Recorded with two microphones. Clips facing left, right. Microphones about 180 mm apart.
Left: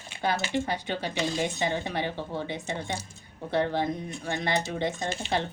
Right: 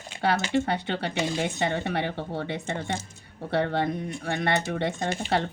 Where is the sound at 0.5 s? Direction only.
60° right (ahead or behind).